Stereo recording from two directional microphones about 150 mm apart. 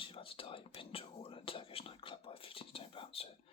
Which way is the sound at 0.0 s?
35° left (ahead or behind).